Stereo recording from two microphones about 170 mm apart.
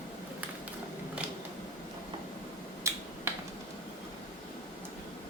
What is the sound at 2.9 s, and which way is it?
Finger snapping, 15° right (ahead or behind).